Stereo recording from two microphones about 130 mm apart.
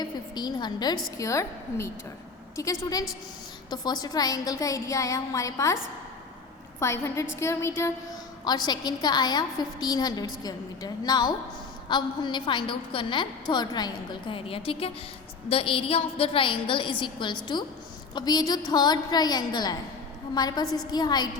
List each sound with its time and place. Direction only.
0.0 s a sound: 35° left (ahead or behind)
1.2 s a woman's voice: 25° left (ahead or behind)
3.7 s a woman's voice: 30° left (ahead or behind)
6.7 s a woman's voice: 20° left (ahead or behind)
8.4 s a woman's voice: 35° left (ahead or behind)